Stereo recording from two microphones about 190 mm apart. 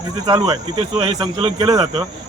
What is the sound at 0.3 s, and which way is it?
Speech, 20° right (ahead or behind).